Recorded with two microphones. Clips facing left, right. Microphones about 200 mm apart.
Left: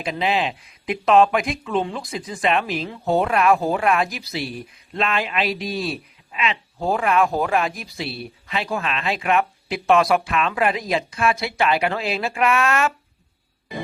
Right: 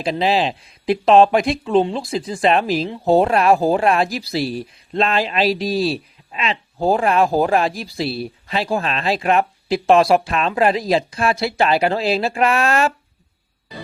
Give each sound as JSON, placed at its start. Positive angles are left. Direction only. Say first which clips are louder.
{"t": 0.0, "sound": "speech", "louder": "right 4 dB", "side_deg": -35}